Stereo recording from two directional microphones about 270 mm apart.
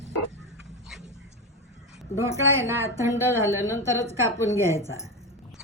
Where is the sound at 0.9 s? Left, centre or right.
Centre.